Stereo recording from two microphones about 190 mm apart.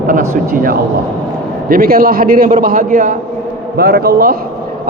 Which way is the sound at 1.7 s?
50° right (ahead or behind).